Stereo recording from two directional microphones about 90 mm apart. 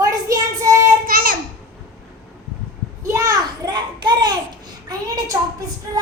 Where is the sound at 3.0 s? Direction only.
35° right (ahead or behind).